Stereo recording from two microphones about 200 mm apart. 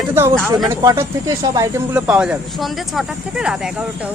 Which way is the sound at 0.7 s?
15° right (ahead or behind).